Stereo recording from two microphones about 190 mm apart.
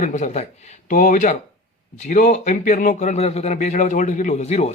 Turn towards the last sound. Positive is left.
turn(degrees=35)  # may be behind; listen again after turning